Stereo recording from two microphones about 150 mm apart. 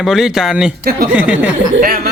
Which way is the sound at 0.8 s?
85° right.